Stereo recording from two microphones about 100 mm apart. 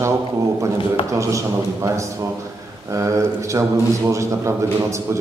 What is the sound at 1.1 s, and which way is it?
A man's voice, 30° right (ahead or behind).